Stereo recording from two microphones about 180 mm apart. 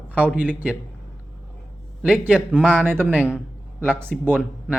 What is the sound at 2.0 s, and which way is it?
Speech, 5° right (ahead or behind).